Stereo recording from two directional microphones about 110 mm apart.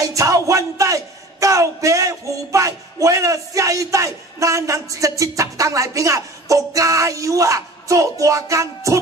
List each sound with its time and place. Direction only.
0.0 s speech: 30° right (ahead or behind)